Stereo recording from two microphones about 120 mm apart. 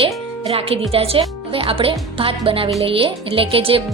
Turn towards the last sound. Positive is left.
turn(degrees=-50)  # may be behind; listen again after turning